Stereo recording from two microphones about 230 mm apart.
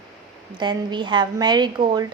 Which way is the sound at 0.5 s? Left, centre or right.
Centre.